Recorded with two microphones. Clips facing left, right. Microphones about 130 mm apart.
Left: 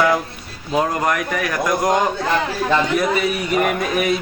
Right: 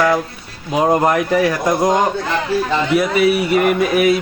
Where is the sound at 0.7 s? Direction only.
25° right (ahead or behind).